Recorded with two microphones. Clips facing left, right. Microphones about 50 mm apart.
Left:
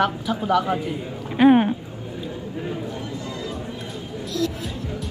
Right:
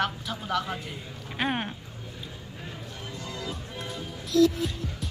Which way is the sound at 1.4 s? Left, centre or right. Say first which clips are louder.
Left 14 dB; centre.